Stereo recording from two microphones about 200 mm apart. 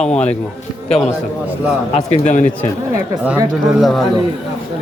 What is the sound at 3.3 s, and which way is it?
Speech, 5° right (ahead or behind).